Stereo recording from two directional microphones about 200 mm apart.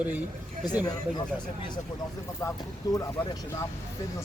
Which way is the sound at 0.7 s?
20° left (ahead or behind).